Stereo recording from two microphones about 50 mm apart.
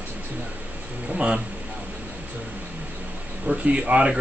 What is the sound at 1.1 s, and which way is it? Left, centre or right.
Speech, right.